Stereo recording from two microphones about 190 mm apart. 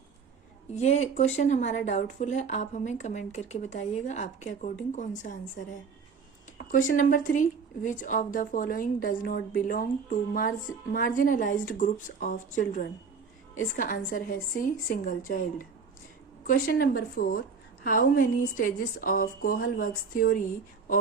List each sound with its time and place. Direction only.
0.7 s speech: 35° left (ahead or behind)
5.3 s a woman's voice: 50° left (ahead or behind)
6.9 s a woman's voice: 45° left (ahead or behind)